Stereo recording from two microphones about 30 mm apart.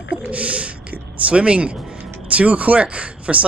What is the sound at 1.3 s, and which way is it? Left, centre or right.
Speech, right.